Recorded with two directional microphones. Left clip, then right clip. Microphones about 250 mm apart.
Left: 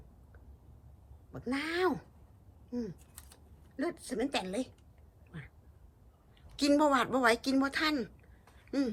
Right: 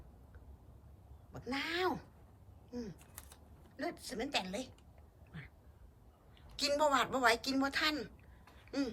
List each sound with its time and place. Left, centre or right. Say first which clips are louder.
1.3 s a woman's voice: left 3 dB; centre
5.3 s a sound: left 3 dB; centre
6.6 s a woman's voice: left 4 dB; centre